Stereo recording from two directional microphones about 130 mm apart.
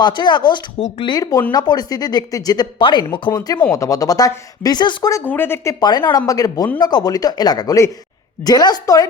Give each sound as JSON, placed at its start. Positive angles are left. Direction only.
{"t": 0.0, "sound": "speech", "side_deg": 35}
{"t": 5.2, "sound": "speech", "side_deg": 15}
{"t": 6.1, "sound": "speech", "side_deg": 30}